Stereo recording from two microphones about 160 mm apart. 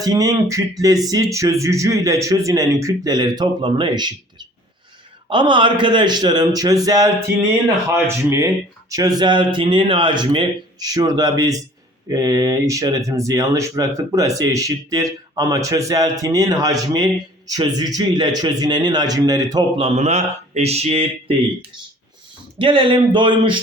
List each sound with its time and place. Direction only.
0.0 s a man's voice: 25° right (ahead or behind)
19.7 s speech: 40° right (ahead or behind)
22.5 s speech: 35° right (ahead or behind)